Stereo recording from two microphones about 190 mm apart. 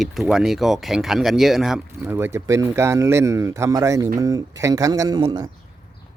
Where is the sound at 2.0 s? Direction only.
15° right (ahead or behind).